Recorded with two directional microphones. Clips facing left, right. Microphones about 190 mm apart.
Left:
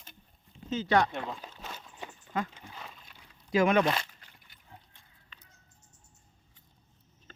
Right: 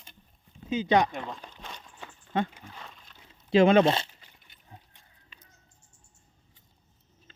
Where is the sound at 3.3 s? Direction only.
25° right (ahead or behind).